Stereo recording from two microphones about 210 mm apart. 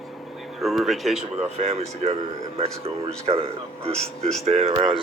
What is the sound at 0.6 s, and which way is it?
Speech, centre (ahead or behind).